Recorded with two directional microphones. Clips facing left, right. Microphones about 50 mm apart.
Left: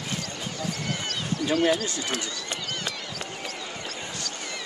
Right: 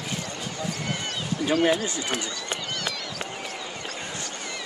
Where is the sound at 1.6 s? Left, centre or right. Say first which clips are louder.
Right 1 dB; right.